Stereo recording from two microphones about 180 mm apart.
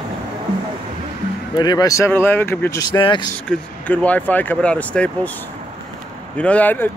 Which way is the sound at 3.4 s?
5° left (ahead or behind).